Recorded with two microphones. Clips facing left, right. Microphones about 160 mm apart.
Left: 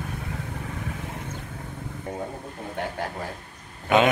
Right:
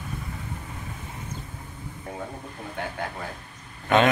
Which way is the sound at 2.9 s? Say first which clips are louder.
Left 2 dB; 30° left (ahead or behind).